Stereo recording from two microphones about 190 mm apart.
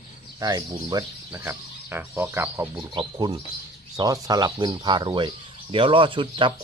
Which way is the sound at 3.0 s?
25° right (ahead or behind).